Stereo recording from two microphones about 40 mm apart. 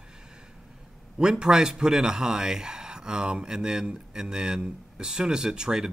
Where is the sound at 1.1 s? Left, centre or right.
Centre.